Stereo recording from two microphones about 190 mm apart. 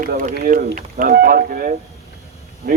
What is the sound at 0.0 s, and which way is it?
A man's voice, 45° right (ahead or behind).